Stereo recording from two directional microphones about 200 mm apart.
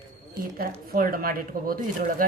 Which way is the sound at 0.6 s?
45° right (ahead or behind).